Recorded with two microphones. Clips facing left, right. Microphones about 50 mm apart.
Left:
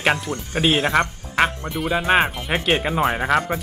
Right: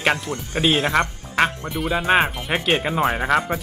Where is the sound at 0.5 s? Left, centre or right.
Left.